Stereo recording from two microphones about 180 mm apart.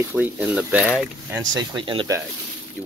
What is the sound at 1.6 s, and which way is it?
Speech, 25° right (ahead or behind).